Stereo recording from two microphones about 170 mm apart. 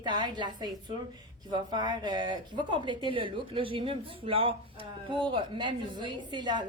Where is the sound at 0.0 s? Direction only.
25° right (ahead or behind).